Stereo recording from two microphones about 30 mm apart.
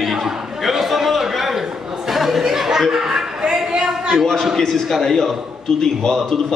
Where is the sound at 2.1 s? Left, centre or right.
Centre.